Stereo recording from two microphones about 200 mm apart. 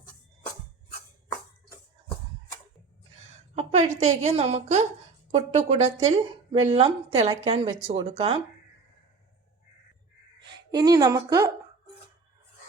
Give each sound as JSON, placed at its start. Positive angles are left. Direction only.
{"t": 3.5, "sound": "a woman's voice", "side_deg": -30}
{"t": 10.7, "sound": "a woman's voice", "side_deg": -20}